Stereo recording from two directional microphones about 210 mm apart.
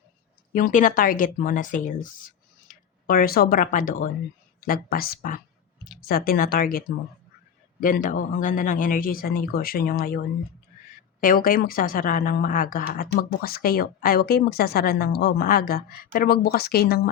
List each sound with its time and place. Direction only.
0.5 s a woman's voice: 40° left (ahead or behind)
11.2 s a woman's voice: 40° left (ahead or behind)